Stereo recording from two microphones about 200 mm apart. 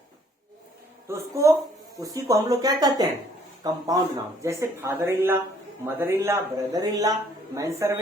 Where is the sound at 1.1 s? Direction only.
15° right (ahead or behind).